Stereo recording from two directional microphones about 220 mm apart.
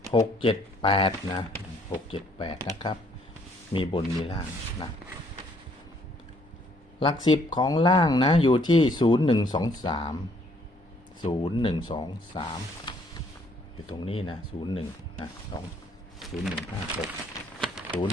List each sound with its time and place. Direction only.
0.1 s speech: 20° left (ahead or behind)
7.0 s speech: 20° left (ahead or behind)
11.2 s speech: 20° left (ahead or behind)
16.2 s wild animals: centre (ahead or behind)
17.6 s typing: centre (ahead or behind)